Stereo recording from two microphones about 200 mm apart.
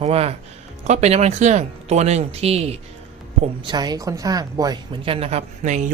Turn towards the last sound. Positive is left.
turn(degrees=-35)  # may be behind; listen again after turning